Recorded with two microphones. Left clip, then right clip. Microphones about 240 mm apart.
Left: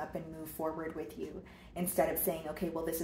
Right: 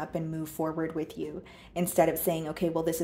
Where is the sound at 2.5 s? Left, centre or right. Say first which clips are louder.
Right 8 dB; right.